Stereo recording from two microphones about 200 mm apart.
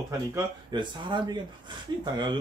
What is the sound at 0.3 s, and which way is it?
Speech, 20° right (ahead or behind).